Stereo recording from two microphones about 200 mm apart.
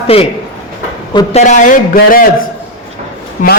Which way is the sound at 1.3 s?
35° left (ahead or behind).